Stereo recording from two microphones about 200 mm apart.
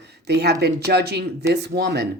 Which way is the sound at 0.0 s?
55° right (ahead or behind).